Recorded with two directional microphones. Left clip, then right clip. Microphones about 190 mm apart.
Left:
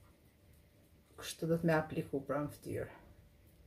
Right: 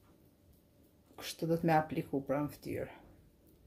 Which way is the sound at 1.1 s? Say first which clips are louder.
Right 1 dB; 30° right (ahead or behind).